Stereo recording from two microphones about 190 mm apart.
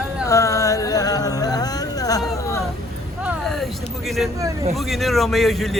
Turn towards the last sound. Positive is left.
turn(degrees=0)  # may be behind; listen again after turning